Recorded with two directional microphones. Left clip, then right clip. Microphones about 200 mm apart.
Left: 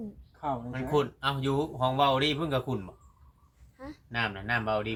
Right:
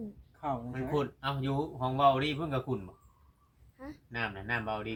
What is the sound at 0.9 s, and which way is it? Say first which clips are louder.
Speech: left 6 dB; 50° left (ahead or behind).